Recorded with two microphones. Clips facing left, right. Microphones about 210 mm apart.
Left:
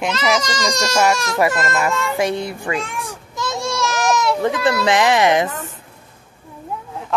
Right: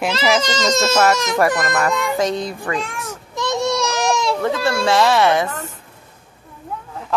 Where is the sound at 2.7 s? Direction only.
20° left (ahead or behind).